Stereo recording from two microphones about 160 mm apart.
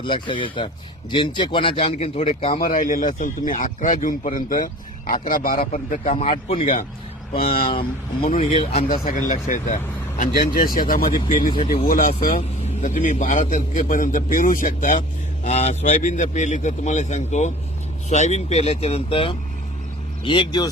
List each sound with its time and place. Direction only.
0.0 s a man's voice: 30° left (ahead or behind)
2.6 s speech: 60° left (ahead or behind)
6.1 s a man's voice: 35° left (ahead or behind)
8.4 s a man's voice: 40° left (ahead or behind)
8.9 s speech: 60° left (ahead or behind)
11.3 s a man's voice: 35° left (ahead or behind)
11.9 s speech: 65° left (ahead or behind)
12.2 s a man's voice: 40° left (ahead or behind)